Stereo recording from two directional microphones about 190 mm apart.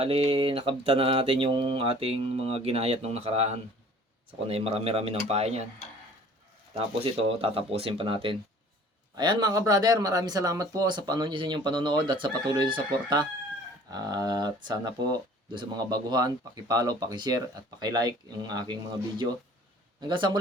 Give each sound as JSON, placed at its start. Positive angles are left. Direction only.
{"t": 0.0, "sound": "speech", "side_deg": -30}
{"t": 6.7, "sound": "speech", "side_deg": -30}